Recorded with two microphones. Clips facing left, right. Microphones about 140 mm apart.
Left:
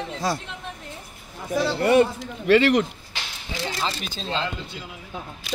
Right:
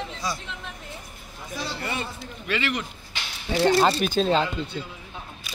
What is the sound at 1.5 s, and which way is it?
A man's voice, 65° left (ahead or behind).